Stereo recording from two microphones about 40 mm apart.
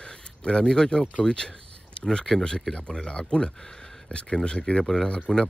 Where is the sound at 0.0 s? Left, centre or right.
Left.